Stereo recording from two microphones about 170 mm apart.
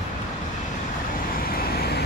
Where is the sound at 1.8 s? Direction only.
70° left (ahead or behind).